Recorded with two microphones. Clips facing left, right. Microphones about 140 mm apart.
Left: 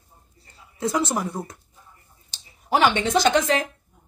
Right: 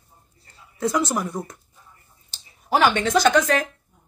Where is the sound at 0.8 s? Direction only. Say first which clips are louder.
Right 1 dB; 25° left (ahead or behind).